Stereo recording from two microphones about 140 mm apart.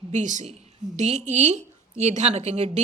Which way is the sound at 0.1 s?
60° right (ahead or behind).